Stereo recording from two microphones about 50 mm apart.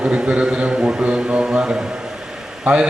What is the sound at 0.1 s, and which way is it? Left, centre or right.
A man's voice, centre.